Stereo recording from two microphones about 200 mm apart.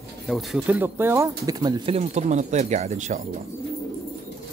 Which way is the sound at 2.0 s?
35° right (ahead or behind).